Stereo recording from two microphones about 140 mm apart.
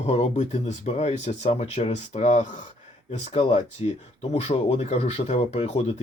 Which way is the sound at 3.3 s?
40° left (ahead or behind).